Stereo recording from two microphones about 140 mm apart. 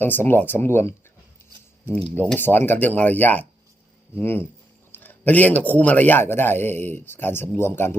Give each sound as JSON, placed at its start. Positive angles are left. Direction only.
{"t": 0.0, "sound": "speech", "side_deg": 15}
{"t": 2.1, "sound": "speech", "side_deg": 15}